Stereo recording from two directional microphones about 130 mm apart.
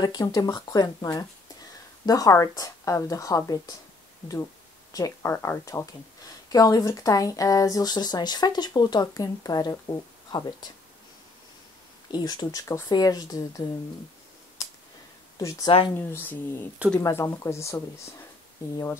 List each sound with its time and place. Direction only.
0.0 s speech: 30° left (ahead or behind)
4.9 s speech: 25° left (ahead or behind)
12.1 s speech: 35° left (ahead or behind)
15.3 s speech: 30° left (ahead or behind)
16.1 s speech: 15° left (ahead or behind)